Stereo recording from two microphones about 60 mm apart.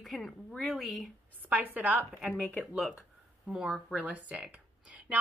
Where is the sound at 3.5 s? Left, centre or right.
Centre.